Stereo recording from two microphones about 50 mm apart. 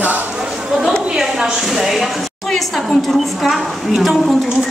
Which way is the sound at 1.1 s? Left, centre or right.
Centre.